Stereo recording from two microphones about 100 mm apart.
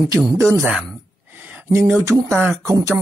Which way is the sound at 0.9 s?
15° right (ahead or behind).